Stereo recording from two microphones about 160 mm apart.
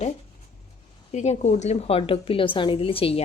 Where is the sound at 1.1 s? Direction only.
45° left (ahead or behind).